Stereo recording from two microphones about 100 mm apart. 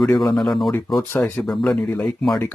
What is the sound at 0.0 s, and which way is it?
Speech, 5° left (ahead or behind).